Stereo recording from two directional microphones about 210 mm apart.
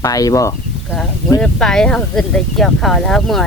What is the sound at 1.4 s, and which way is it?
Speech, 5° left (ahead or behind).